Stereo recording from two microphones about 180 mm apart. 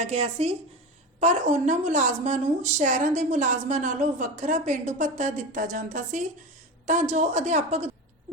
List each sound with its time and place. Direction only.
0.0 s a woman's voice: 35° right (ahead or behind)